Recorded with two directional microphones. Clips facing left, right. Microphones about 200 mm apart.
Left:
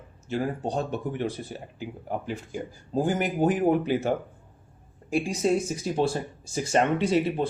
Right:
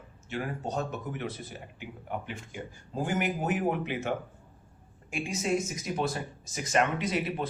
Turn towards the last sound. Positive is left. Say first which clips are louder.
# left 7 dB
turn(degrees=30)  # may be behind; listen again after turning